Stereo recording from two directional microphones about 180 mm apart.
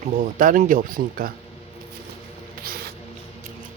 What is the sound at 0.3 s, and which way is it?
Speech, 50° right (ahead or behind).